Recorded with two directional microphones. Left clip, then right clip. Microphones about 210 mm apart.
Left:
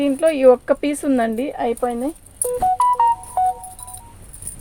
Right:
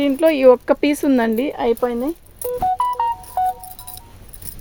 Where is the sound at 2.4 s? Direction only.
Centre (ahead or behind).